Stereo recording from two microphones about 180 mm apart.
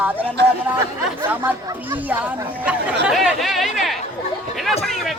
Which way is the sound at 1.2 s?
10° right (ahead or behind).